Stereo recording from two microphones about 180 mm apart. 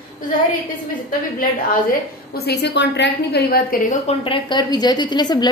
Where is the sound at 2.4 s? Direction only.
75° left (ahead or behind); by 4.1 s 45° left (ahead or behind).